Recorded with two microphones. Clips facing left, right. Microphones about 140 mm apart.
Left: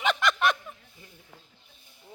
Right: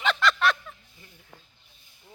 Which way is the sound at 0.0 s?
15° left (ahead or behind).